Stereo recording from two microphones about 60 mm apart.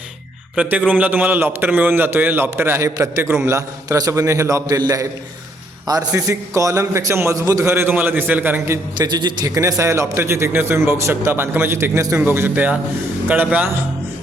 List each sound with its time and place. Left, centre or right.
0.9 s a man's voice: right
2.8 s a man's voice: right
3.4 s a man's voice: right
4.1 s a man's voice: right
5.9 s a man's voice: right
7.1 s a man's voice: right
7.3 s a man's voice: right
7.7 s a man's voice: right
9.1 s a man's voice: right
11.2 s a man's voice: right
12.2 s a man's voice: right